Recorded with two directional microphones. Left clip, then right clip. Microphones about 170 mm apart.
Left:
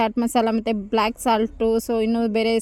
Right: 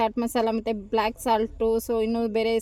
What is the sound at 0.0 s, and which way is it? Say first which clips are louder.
Speech: left 4 dB; 25° left (ahead or behind).